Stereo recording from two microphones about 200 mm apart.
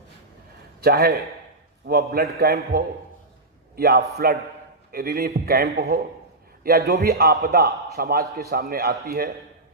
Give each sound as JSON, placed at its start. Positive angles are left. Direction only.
{"t": 0.8, "sound": "a man's voice", "side_deg": -50}